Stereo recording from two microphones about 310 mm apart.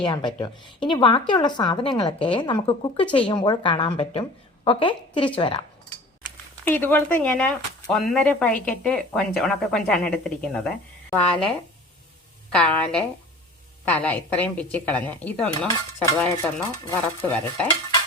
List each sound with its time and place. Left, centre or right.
0.0 s a woman's voice: centre
12.5 s speech: centre